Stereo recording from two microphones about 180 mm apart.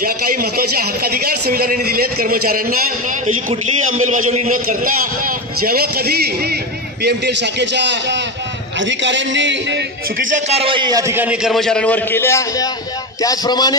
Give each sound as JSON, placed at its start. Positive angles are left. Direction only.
{"t": 0.0, "sound": "a man's voice", "side_deg": -55}
{"t": 8.7, "sound": "a man's voice", "side_deg": -90}
{"t": 10.1, "sound": "a man's voice", "side_deg": -40}